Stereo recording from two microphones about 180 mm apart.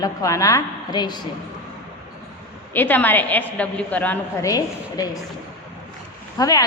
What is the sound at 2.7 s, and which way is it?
A woman's voice, 10° left (ahead or behind).